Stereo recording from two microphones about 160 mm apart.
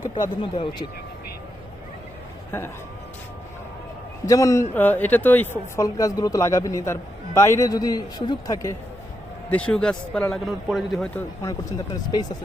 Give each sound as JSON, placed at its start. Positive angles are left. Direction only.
{"t": 0.1, "sound": "speech", "side_deg": 30}
{"t": 4.3, "sound": "speech", "side_deg": 20}
{"t": 9.5, "sound": "speech", "side_deg": 5}